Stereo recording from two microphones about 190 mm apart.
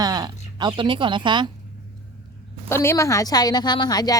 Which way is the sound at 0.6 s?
25° right (ahead or behind).